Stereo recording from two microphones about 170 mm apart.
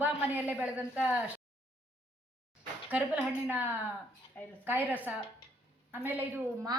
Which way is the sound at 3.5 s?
10° right (ahead or behind).